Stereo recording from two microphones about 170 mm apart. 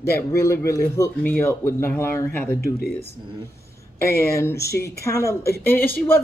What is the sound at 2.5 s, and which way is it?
Speech, 60° left (ahead or behind).